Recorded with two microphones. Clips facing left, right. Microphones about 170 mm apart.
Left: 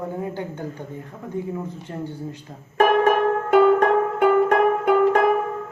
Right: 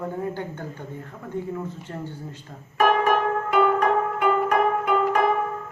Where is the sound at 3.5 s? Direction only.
50° left (ahead or behind).